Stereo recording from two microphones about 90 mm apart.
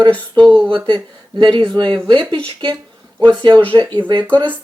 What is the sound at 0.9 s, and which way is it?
Speech, 55° right (ahead or behind).